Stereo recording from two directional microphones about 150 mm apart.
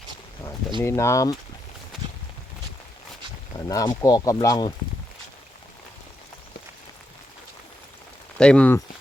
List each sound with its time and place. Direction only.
0.8 s speech: 20° left (ahead or behind)
3.6 s speech: 25° left (ahead or behind)
8.4 s speech: 5° left (ahead or behind)